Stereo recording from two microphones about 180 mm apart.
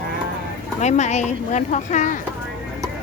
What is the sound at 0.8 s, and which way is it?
Speech, 40° left (ahead or behind).